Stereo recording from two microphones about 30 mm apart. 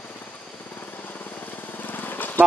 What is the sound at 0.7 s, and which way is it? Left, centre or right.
Vehicle, left.